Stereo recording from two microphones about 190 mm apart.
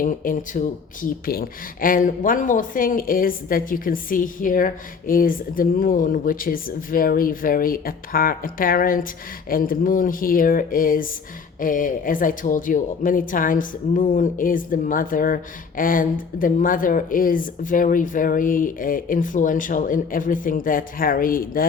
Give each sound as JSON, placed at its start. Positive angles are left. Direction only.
{"t": 0.0, "sound": "a woman's voice", "side_deg": 45}